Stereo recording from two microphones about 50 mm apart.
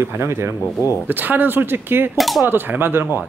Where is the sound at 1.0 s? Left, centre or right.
Right.